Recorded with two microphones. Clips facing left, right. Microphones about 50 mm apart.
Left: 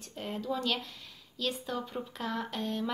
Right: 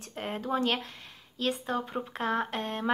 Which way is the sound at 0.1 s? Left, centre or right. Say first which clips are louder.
Right 3 dB; right.